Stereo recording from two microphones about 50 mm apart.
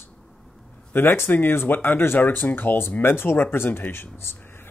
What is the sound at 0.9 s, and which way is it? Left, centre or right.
Speech, left.